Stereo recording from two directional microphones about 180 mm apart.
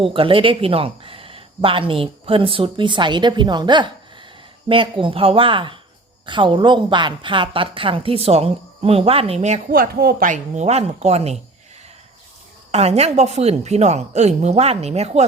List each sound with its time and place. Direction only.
0.0 s a woman's voice: 30° right (ahead or behind)
9.7 s speech: 55° right (ahead or behind); by 11.3 s 35° right (ahead or behind)
12.7 s speech: 35° right (ahead or behind)